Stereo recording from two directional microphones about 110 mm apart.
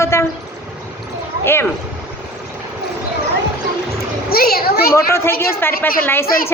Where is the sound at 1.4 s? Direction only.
20° left (ahead or behind).